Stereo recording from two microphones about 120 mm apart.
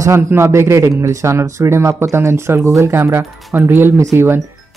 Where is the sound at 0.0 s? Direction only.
25° right (ahead or behind).